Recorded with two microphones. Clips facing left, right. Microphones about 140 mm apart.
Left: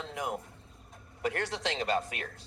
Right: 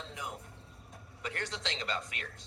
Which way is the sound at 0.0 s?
55° left (ahead or behind).